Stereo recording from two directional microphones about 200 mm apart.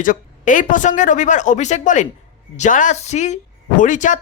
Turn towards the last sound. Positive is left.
turn(degrees=40)  # may be behind; listen again after turning